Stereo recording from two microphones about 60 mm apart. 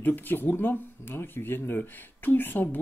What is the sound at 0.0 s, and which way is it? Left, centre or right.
Speech, left.